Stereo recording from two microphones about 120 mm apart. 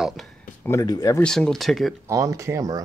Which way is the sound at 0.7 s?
30° left (ahead or behind).